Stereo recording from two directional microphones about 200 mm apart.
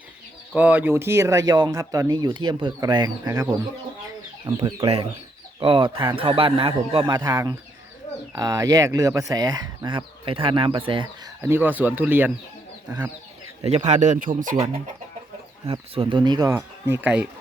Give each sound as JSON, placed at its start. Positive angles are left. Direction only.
{"t": 0.5, "sound": "speech", "side_deg": -10}
{"t": 4.5, "sound": "speech", "side_deg": -25}
{"t": 11.4, "sound": "speech", "side_deg": -10}
{"t": 13.7, "sound": "speech", "side_deg": -35}
{"t": 15.6, "sound": "speech", "side_deg": -25}
{"t": 17.0, "sound": "speech", "side_deg": -5}